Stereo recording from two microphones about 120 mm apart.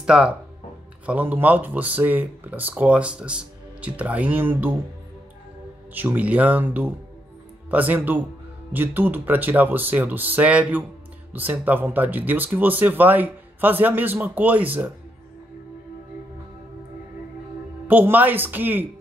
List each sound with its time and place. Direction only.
0.0 s speech: 5° right (ahead or behind)
5.9 s speech: 15° right (ahead or behind)
17.8 s speech: 15° right (ahead or behind)